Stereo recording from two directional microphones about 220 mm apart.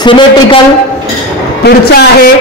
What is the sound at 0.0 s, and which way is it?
Speech, 20° left (ahead or behind).